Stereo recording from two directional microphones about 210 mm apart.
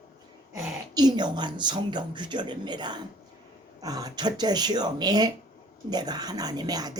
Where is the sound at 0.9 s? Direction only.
20° right (ahead or behind).